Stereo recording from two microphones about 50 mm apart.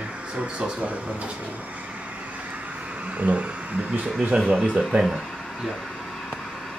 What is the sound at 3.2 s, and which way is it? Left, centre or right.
Speech, right.